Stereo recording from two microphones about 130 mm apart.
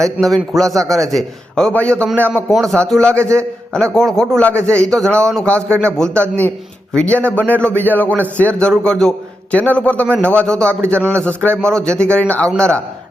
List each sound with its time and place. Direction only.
0.2 s a man's voice: centre (ahead or behind)
3.1 s a man's voice: 20° right (ahead or behind)
3.8 s a man's voice: 5° left (ahead or behind)